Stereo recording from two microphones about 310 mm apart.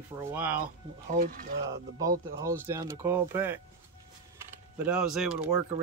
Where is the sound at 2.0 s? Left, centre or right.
Centre.